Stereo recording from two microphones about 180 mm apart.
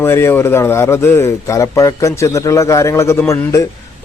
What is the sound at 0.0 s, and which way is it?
Speech, 15° left (ahead or behind).